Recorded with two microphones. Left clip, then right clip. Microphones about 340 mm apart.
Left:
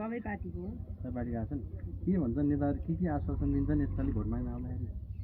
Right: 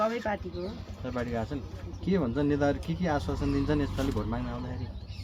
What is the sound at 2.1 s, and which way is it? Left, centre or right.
Speech, right.